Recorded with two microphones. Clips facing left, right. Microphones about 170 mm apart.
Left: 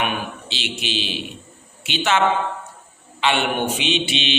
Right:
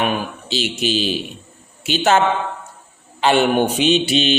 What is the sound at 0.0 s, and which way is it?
Mantra, 40° right (ahead or behind).